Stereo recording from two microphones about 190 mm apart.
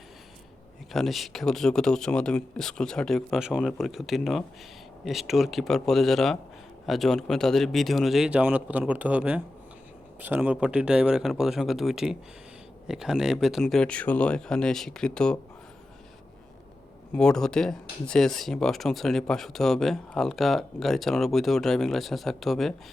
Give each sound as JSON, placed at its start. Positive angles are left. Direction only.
{"t": 0.9, "sound": "speech", "side_deg": 0}
{"t": 17.2, "sound": "speech", "side_deg": 5}